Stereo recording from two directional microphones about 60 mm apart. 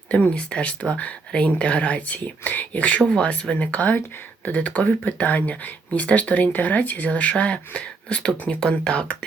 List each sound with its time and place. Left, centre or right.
0.1 s speech: centre
3.0 s speech: centre